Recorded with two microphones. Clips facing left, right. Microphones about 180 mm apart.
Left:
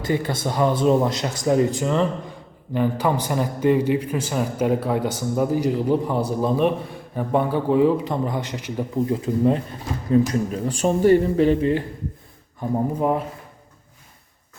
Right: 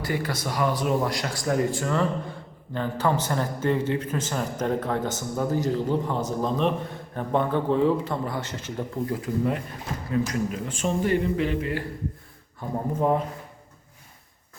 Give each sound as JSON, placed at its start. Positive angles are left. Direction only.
{"t": 0.0, "sound": "a man's voice", "side_deg": 25}
{"t": 9.2, "sound": "a man's voice", "side_deg": 30}
{"t": 13.0, "sound": "a man's voice", "side_deg": 10}